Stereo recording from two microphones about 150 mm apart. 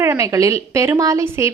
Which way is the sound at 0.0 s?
20° right (ahead or behind).